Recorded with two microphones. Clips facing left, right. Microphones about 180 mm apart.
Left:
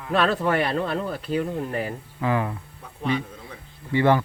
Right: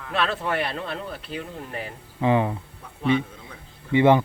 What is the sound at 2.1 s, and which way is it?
Speech, 20° right (ahead or behind).